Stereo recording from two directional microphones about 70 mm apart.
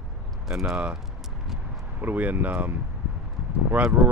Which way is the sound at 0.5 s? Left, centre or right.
Centre.